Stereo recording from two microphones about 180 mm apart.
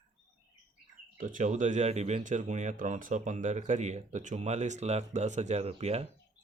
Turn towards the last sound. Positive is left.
turn(degrees=-35)  # may be behind; listen again after turning